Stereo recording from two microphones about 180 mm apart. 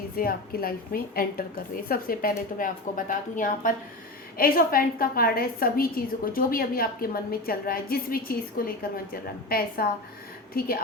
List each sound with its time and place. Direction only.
0.2 s a woman's voice: 55° left (ahead or behind)